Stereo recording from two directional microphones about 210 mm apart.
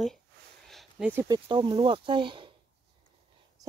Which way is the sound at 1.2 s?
20° right (ahead or behind).